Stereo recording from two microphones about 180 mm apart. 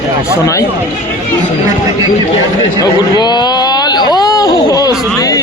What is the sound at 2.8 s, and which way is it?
Speech, 25° left (ahead or behind).